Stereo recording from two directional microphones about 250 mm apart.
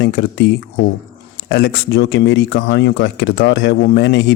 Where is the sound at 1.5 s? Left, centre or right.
Left.